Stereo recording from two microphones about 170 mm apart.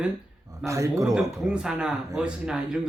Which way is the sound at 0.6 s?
20° right (ahead or behind).